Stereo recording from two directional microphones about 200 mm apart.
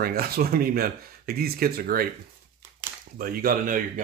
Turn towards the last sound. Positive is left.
turn(degrees=-45)  # may be behind; listen again after turning